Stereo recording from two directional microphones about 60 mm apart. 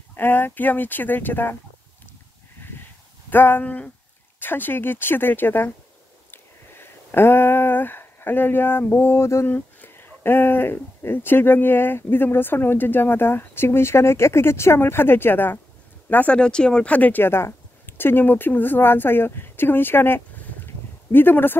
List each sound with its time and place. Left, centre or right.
0.1 s speech: left
2.6 s crow: left
3.3 s speech: left
9.5 s speech: left
16.3 s speech: centre
17.3 s speech: left